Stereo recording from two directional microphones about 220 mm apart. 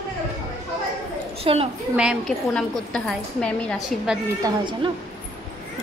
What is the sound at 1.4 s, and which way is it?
Speech, 25° right (ahead or behind).